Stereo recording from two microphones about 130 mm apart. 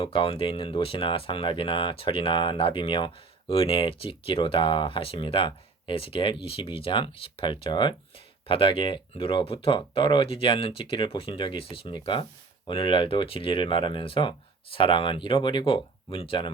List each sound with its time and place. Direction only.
0.0 s speech: 45° left (ahead or behind)